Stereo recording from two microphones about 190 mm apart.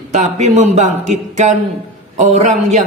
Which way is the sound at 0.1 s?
40° right (ahead or behind).